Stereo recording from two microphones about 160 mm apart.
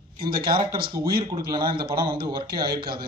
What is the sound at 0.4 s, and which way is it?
Speech, 30° right (ahead or behind).